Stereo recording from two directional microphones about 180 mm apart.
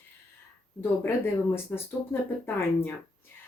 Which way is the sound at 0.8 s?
15° left (ahead or behind).